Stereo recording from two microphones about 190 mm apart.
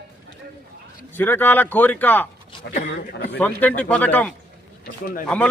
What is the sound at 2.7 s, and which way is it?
Speech, 65° left (ahead or behind).